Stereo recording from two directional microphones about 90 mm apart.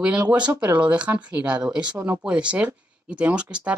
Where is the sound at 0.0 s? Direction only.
15° right (ahead or behind).